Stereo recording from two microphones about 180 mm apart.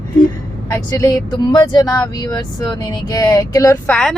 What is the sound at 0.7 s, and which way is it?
Speech, 20° left (ahead or behind).